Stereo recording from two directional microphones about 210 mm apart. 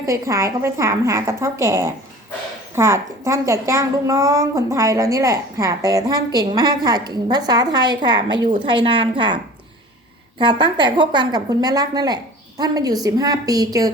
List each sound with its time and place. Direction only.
0.0 s a woman's voice: 15° right (ahead or behind)